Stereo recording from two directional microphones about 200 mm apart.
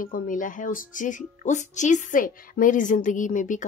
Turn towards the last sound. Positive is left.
turn(degrees=40)  # may be behind; listen again after turning